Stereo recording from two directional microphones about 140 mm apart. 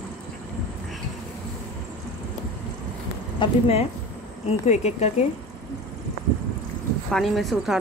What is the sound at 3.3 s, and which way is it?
Speech, 40° left (ahead or behind).